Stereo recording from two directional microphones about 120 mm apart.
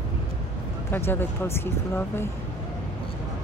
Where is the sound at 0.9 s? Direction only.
20° left (ahead or behind).